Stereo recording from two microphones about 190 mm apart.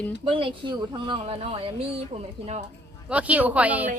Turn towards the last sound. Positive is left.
turn(degrees=-10)  # may be behind; listen again after turning